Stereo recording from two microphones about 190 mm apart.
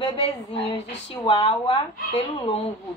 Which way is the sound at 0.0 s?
25° left (ahead or behind).